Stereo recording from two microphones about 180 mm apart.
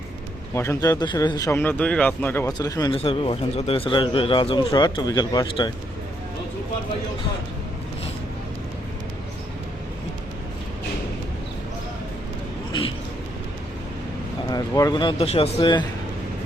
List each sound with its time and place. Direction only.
0.5 s a man's voice: 15° left (ahead or behind)
2.9 s speech: 30° left (ahead or behind)
14.5 s speech: 20° left (ahead or behind)